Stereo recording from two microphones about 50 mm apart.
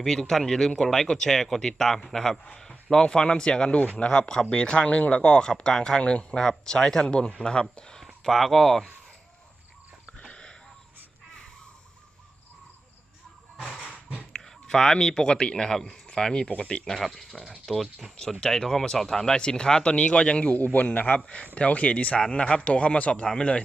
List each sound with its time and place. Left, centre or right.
0.0 s speech: centre
8.0 s speech: centre
10.2 s wheeze: centre
14.2 s speech: centre
17.0 s speech: centre; by 23.6 s left